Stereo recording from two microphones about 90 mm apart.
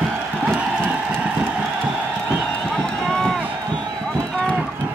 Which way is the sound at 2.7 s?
5° left (ahead or behind).